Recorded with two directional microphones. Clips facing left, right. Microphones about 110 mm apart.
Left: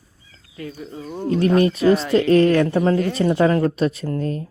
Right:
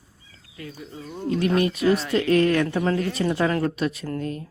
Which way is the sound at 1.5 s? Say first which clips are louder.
Left 5 dB; 35° left (ahead or behind).